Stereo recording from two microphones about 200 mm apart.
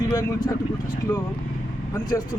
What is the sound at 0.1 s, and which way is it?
Speech, 15° left (ahead or behind).